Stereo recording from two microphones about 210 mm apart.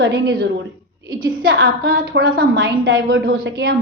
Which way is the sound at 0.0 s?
50° right (ahead or behind).